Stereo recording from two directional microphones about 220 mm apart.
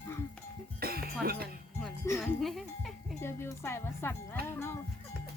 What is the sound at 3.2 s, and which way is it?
Speech, 10° left (ahead or behind).